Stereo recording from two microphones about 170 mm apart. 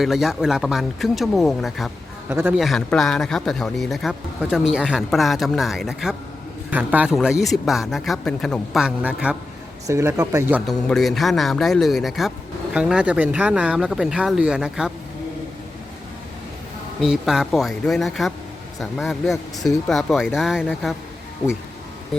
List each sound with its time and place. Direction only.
0.0 s speech: centre (ahead or behind)
2.3 s speech: 10° right (ahead or behind)
2.6 s speech: centre (ahead or behind)
9.8 s speech: 15° right (ahead or behind)
10.7 s speech: centre (ahead or behind)
17.0 s speech: centre (ahead or behind)